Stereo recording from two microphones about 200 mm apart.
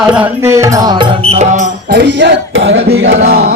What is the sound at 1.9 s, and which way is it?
Music, 55° right (ahead or behind).